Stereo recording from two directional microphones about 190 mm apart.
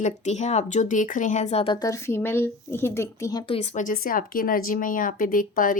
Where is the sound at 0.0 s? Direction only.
35° left (ahead or behind); by 3.4 s 15° left (ahead or behind).